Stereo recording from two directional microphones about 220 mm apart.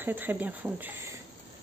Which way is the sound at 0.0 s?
10° right (ahead or behind).